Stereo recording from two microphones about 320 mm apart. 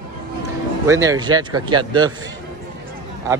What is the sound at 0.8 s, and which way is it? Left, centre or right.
Speech, centre.